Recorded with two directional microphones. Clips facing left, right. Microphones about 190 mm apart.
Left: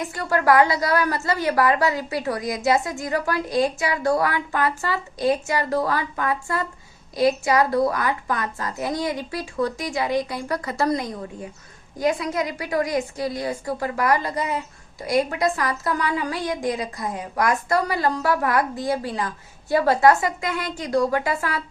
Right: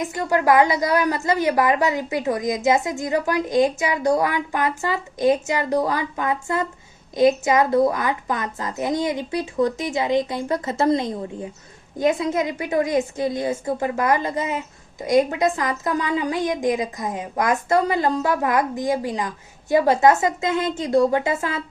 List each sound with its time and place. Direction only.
0.0 s a woman's voice: 20° right (ahead or behind)